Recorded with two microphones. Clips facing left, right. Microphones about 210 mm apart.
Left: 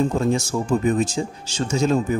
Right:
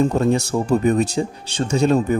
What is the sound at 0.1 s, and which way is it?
Speech, 65° right (ahead or behind).